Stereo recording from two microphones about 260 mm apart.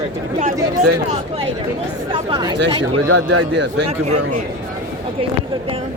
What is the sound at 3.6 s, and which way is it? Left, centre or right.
Speech, right.